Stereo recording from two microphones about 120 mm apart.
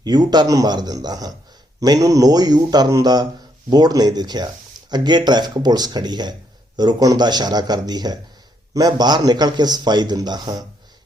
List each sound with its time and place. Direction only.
0.0 s a man's voice: 35° right (ahead or behind)